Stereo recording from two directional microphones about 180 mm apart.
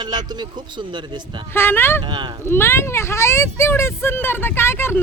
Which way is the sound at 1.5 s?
15° left (ahead or behind).